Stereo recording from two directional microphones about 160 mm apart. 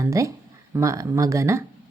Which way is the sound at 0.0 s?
20° right (ahead or behind).